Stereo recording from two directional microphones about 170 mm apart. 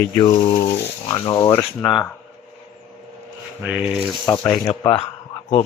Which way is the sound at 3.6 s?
5° right (ahead or behind).